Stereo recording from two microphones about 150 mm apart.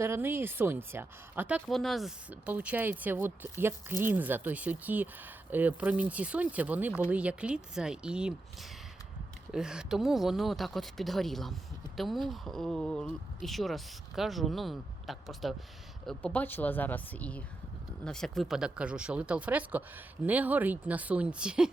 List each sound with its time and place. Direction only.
0.0 s speech: 15° right (ahead or behind)
1.6 s speech: centre (ahead or behind)
16.0 s speech: 10° left (ahead or behind); by 21.7 s 5° right (ahead or behind)